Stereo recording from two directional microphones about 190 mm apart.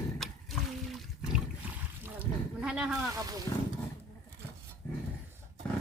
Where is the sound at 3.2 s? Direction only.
20° right (ahead or behind).